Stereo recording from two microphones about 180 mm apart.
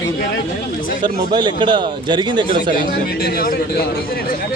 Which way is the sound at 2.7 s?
55° left (ahead or behind).